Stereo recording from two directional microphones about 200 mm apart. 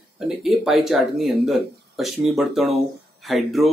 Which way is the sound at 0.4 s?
Centre (ahead or behind).